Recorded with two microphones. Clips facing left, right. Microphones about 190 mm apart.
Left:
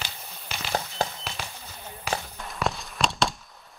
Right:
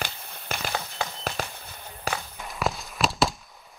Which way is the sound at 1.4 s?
45° right (ahead or behind).